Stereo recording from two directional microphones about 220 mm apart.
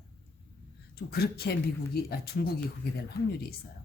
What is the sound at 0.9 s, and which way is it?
Speech, 45° left (ahead or behind).